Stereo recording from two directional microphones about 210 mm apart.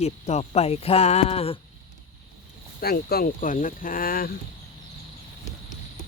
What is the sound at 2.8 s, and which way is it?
Speech, 45° left (ahead or behind).